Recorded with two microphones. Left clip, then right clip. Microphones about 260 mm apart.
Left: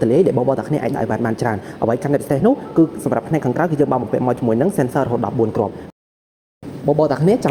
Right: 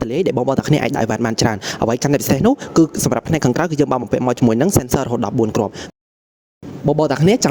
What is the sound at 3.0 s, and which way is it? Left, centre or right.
Speech, right.